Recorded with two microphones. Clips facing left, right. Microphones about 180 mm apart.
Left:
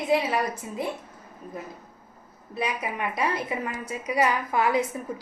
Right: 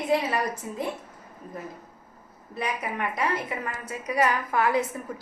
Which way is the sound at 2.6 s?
10° left (ahead or behind).